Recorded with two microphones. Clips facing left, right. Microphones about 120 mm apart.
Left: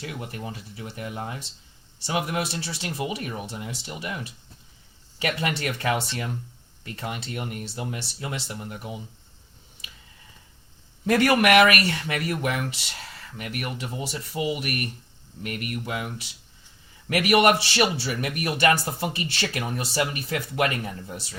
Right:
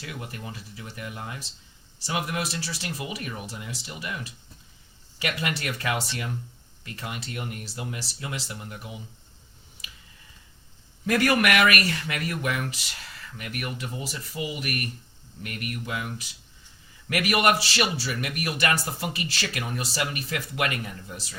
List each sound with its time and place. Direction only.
0.0 s a man's voice: 30° left (ahead or behind)
5.2 s speech: 30° left (ahead or behind)
11.0 s speech: 35° left (ahead or behind)
17.1 s speech: 30° left (ahead or behind)